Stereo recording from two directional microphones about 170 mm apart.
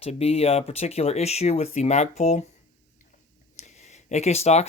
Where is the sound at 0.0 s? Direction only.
35° left (ahead or behind).